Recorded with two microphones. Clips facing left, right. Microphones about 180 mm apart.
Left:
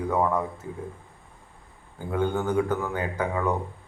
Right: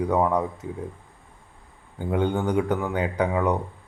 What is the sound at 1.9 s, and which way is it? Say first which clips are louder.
Speech: right 2 dB; 20° right (ahead or behind).